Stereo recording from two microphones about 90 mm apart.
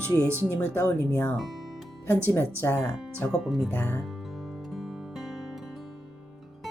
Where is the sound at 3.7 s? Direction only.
20° left (ahead or behind).